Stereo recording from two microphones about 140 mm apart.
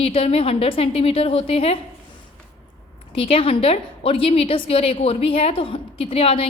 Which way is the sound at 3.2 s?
40° left (ahead or behind).